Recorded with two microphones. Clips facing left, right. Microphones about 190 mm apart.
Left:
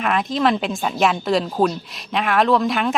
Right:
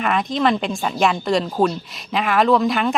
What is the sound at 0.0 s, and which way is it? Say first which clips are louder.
A woman's voice: even; centre (ahead or behind).